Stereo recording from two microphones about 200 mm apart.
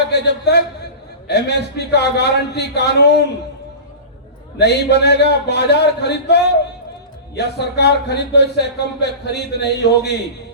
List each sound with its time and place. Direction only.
0.1 s a man's voice: 55° left (ahead or behind)
4.5 s speech: 55° left (ahead or behind)